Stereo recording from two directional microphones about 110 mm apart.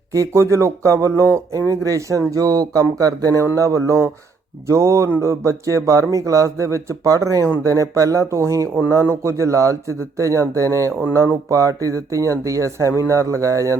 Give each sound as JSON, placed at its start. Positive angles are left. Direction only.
{"t": 0.1, "sound": "speech", "side_deg": -30}